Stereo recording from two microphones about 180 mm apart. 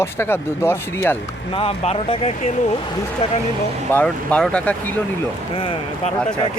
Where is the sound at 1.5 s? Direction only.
30° left (ahead or behind).